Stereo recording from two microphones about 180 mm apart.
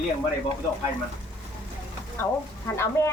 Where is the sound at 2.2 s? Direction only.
15° left (ahead or behind).